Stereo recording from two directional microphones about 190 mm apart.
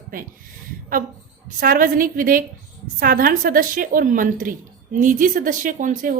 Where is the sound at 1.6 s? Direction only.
45° right (ahead or behind).